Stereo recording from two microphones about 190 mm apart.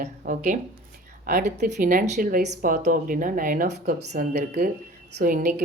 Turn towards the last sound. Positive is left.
turn(degrees=-45)  # may be behind; listen again after turning